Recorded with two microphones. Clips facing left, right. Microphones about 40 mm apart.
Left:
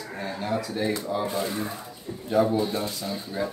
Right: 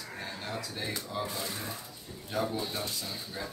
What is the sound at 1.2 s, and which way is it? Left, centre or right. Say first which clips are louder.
Speech: left 9 dB; left.